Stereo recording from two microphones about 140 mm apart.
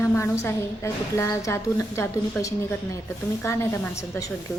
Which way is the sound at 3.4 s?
20° left (ahead or behind).